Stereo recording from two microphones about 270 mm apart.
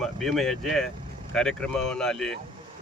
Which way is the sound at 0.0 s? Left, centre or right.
Centre.